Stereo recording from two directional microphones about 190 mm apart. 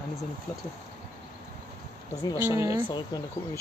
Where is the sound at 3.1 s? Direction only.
20° left (ahead or behind).